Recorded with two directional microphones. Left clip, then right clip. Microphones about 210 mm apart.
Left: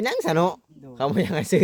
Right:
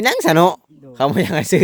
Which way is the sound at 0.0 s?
35° right (ahead or behind).